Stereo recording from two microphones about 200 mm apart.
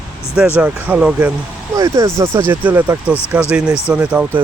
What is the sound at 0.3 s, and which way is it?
Speech, 5° right (ahead or behind).